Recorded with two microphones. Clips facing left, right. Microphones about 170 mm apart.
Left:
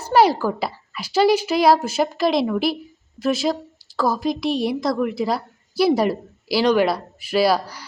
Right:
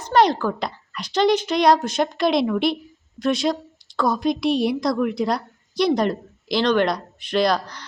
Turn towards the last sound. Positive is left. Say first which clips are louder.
# left 2 dB
turn(degrees=10)  # may be behind; listen again after turning